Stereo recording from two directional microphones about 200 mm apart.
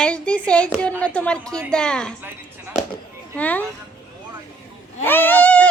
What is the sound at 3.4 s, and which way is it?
Speech, 5° left (ahead or behind).